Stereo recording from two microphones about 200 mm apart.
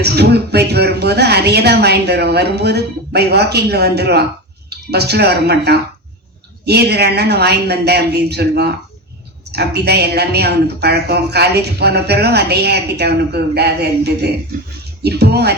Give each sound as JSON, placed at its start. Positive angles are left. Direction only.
{"t": 0.0, "sound": "speech", "side_deg": -55}